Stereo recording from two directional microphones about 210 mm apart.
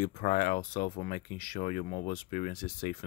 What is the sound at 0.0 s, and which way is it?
Speech, 40° left (ahead or behind).